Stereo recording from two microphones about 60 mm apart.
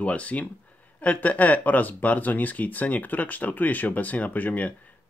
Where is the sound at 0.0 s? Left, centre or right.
Left.